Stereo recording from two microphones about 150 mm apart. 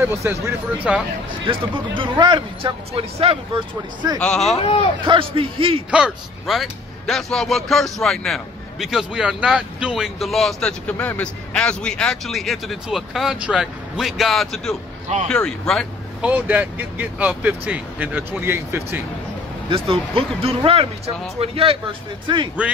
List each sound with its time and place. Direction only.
0.0 s speech: 20° right (ahead or behind)
0.9 s a man's voice: 5° right (ahead or behind)
1.4 s speech: 35° right (ahead or behind)
4.2 s a man's voice: centre (ahead or behind)
4.6 s speech: 40° left (ahead or behind)
5.0 s speech: 35° right (ahead or behind)
5.9 s a man's voice: 5° right (ahead or behind)
16.2 s speech: 10° right (ahead or behind)
19.7 s speech: 40° right (ahead or behind)
22.6 s speech: 10° right (ahead or behind)